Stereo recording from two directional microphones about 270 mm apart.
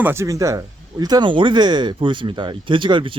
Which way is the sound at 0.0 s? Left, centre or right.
Centre.